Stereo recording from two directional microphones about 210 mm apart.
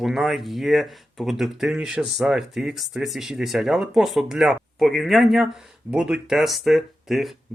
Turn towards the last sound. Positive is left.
turn(degrees=0)  # may be behind; listen again after turning